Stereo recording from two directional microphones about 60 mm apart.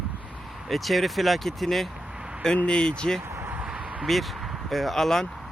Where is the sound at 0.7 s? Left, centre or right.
Centre.